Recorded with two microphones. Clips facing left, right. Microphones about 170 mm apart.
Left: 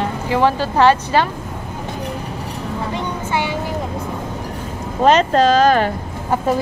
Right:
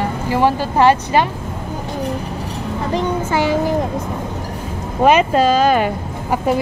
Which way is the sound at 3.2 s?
40° right (ahead or behind).